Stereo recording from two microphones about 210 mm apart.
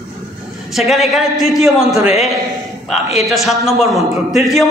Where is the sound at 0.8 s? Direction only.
Centre (ahead or behind).